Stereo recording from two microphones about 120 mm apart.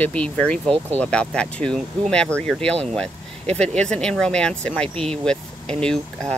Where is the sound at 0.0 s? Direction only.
10° left (ahead or behind).